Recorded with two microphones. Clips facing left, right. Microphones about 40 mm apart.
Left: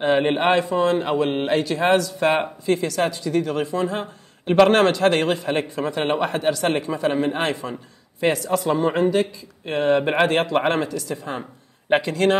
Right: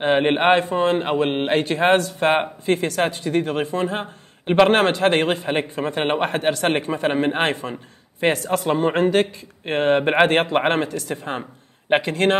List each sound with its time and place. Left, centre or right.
0.0 s a man's voice: right